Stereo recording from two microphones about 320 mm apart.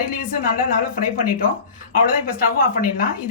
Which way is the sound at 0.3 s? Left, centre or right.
Left.